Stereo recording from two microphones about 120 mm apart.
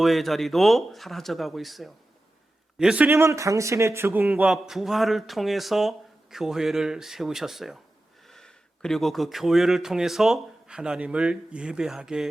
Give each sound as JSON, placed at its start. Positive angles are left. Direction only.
{"t": 0.0, "sound": "a man's voice", "side_deg": 0}
{"t": 3.1, "sound": "speech", "side_deg": -25}
{"t": 4.3, "sound": "speech", "side_deg": -5}